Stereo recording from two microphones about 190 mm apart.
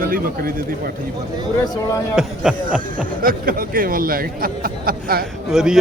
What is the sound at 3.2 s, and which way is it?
Speech, 50° right (ahead or behind).